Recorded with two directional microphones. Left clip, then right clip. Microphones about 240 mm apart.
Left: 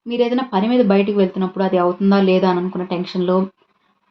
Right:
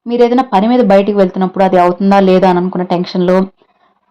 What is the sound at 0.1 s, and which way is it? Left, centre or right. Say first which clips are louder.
Speech: right 9 dB; right.